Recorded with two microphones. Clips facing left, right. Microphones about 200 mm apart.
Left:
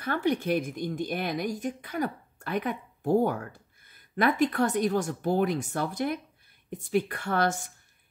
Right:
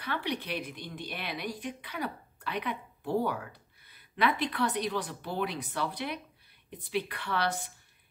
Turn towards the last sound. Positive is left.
turn(degrees=45)  # may be behind; listen again after turning